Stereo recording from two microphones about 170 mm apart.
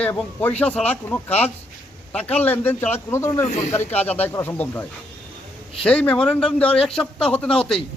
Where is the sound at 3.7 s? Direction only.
10° left (ahead or behind).